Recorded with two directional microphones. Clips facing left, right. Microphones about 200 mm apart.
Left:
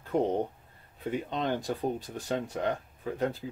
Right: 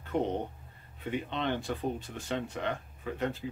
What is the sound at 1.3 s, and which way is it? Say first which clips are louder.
Speech: left 2 dB; 40° left (ahead or behind).